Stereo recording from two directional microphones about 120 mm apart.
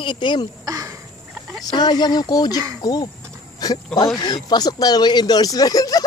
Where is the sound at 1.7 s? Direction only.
35° left (ahead or behind).